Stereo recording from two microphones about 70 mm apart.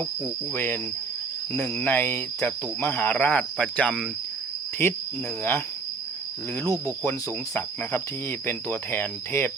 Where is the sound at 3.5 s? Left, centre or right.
Centre.